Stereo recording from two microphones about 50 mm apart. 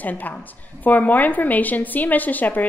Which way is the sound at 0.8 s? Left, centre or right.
Left.